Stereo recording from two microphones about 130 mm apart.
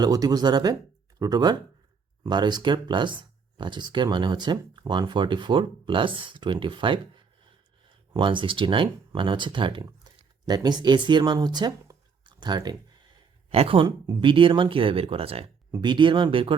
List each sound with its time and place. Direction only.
0.0 s speech: 30° right (ahead or behind)
8.1 s speech: 40° right (ahead or behind)
13.5 s speech: 45° right (ahead or behind)
15.7 s speech: 35° right (ahead or behind)